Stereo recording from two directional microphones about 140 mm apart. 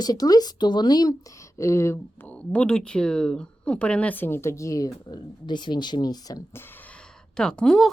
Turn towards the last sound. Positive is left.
turn(degrees=5)  # may be behind; listen again after turning